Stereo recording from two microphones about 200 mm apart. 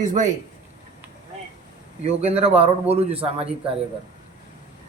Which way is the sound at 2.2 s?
30° right (ahead or behind).